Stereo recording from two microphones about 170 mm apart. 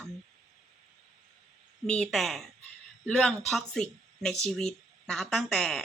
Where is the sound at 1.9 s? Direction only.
5° left (ahead or behind).